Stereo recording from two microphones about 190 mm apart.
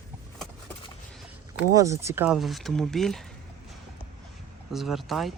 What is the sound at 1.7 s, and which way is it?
Speech, 15° right (ahead or behind).